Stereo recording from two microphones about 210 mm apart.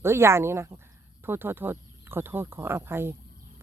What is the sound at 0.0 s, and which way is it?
Speech, 10° right (ahead or behind).